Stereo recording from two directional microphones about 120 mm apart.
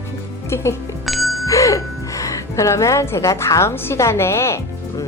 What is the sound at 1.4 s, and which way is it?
Speech, 25° left (ahead or behind).